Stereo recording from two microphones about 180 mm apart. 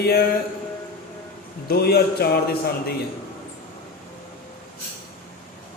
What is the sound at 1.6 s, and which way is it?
Speech, 60° left (ahead or behind).